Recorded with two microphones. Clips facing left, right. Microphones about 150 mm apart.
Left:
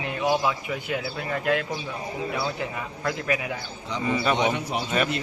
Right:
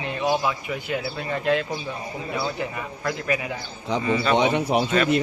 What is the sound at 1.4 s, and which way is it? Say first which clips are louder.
Speech: right 2 dB; 10° left (ahead or behind).